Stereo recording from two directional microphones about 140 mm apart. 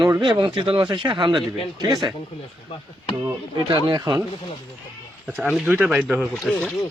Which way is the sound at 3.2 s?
30° right (ahead or behind).